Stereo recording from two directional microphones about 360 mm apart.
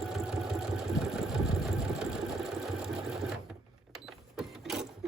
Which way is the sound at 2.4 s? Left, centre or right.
Centre.